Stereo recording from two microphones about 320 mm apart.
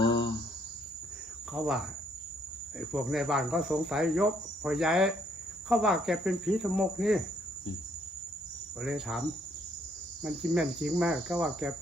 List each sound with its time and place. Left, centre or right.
0.0 s cricket: centre
2.7 s cricket: centre
8.8 s cricket: centre
10.2 s cricket: centre